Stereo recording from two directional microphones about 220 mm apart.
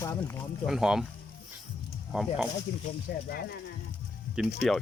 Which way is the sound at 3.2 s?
45° left (ahead or behind).